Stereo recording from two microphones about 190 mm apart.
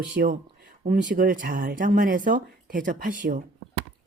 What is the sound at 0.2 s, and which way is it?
Speech, 55° right (ahead or behind).